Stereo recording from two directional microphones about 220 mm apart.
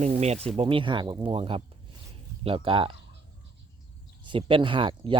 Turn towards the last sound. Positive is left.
turn(degrees=-25)  # may be behind; listen again after turning